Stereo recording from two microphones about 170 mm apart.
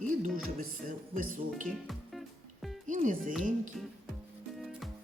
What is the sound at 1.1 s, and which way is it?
Speech, 55° right (ahead or behind).